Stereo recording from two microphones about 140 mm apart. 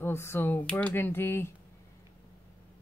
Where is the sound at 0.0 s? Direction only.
15° left (ahead or behind).